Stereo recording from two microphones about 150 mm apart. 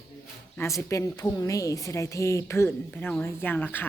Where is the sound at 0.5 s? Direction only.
15° left (ahead or behind).